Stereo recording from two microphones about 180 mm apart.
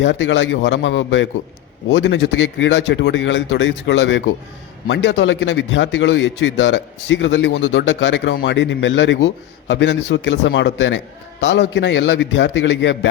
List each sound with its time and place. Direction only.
0.0 s speech: 90° left